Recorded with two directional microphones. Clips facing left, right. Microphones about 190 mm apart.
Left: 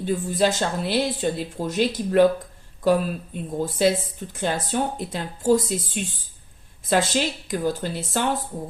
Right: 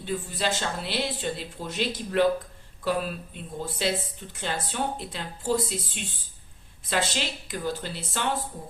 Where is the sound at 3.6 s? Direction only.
45° left (ahead or behind).